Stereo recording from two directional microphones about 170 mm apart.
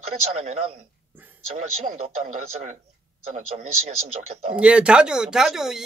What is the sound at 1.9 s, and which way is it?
Speech, 40° right (ahead or behind).